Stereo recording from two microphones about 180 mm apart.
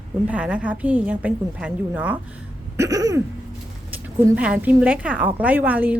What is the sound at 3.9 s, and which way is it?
A woman's voice, 5° right (ahead or behind).